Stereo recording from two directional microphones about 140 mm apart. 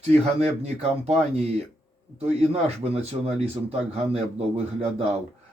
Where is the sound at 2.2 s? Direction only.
50° right (ahead or behind).